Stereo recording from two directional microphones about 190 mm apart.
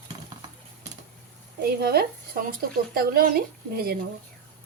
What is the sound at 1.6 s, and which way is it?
Speech, 55° right (ahead or behind).